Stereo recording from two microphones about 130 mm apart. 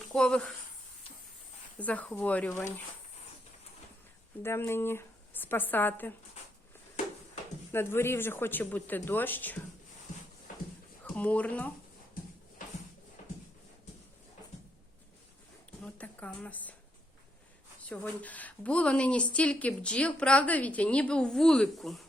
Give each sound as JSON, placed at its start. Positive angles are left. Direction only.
{"t": 0.1, "sound": "speech", "side_deg": 5}
{"t": 1.8, "sound": "a woman's voice", "side_deg": 10}
{"t": 4.4, "sound": "a woman's voice", "side_deg": 20}
{"t": 7.7, "sound": "a woman's voice", "side_deg": 15}
{"t": 11.0, "sound": "speech", "side_deg": 10}
{"t": 12.2, "sound": "a sound", "side_deg": 90}
{"t": 15.8, "sound": "a sound", "side_deg": 10}
{"t": 17.8, "sound": "a woman's voice", "side_deg": 10}